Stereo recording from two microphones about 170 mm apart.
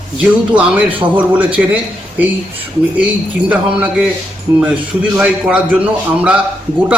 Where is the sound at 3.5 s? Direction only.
5° right (ahead or behind).